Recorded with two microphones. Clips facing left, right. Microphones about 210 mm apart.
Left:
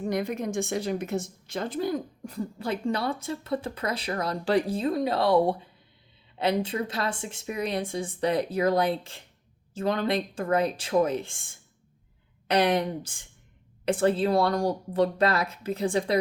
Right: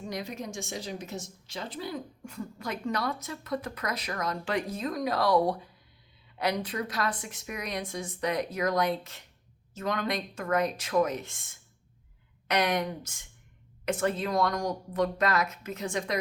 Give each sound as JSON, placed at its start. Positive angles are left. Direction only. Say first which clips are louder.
{"t": 0.0, "sound": "a woman's voice", "louder": "left 8 dB", "side_deg": 55}